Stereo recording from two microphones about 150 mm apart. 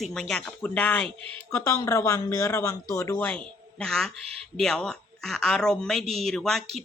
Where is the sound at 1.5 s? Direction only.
20° left (ahead or behind).